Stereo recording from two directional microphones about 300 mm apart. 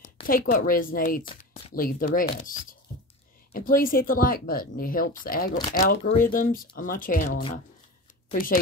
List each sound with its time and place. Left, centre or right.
0.0 s speech: left
3.5 s speech: left